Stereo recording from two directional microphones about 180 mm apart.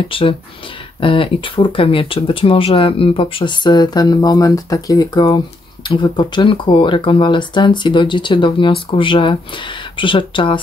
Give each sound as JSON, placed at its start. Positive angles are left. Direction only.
{"t": 0.1, "sound": "speech", "side_deg": 30}